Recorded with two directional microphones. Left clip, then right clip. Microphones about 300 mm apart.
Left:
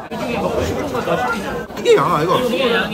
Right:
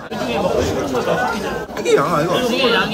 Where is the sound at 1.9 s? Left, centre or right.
Left.